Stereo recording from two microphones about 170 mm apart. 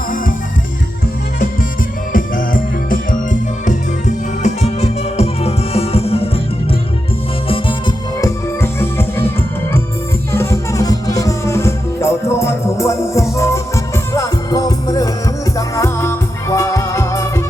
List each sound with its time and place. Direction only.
2.1 s music: 55° left (ahead or behind)
3.7 s music: 45° left (ahead or behind)
7.4 s music: 30° left (ahead or behind)
8.6 s music: 15° left (ahead or behind)
10.3 s music: 15° left (ahead or behind)